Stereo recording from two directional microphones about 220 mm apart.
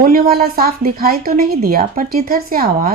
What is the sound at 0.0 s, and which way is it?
Speech, 40° right (ahead or behind).